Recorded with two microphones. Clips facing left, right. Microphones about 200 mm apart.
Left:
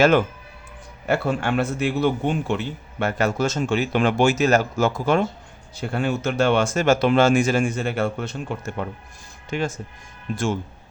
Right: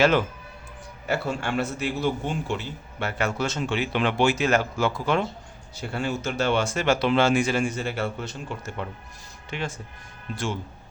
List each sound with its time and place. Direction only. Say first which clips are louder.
1.0 s a man's voice: left 5 dB; 55° left (ahead or behind)
5.9 s a man's voice: left 5 dB; 55° left (ahead or behind)
9.5 s a man's voice: left 6 dB; 45° left (ahead or behind)